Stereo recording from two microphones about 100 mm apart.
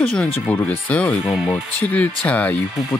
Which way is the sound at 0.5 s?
15° left (ahead or behind).